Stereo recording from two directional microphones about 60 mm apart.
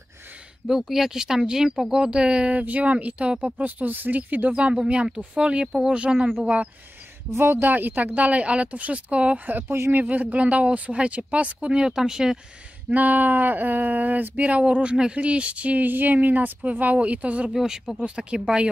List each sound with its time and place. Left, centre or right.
0.7 s speech: centre; by 6.7 s right
7.2 s speech: right
7.6 s speech: right; by 12.4 s centre
12.9 s speech: right
17.5 s speech: centre